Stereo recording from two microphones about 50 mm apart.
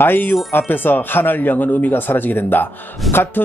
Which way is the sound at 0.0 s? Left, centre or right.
Left.